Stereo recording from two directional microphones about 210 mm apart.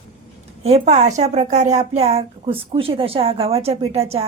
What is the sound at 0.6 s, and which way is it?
A woman's voice, 30° right (ahead or behind).